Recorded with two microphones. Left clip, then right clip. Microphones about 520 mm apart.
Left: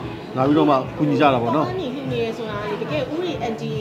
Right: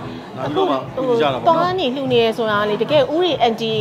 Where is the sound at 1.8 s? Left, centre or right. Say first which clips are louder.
Right 8 dB; right.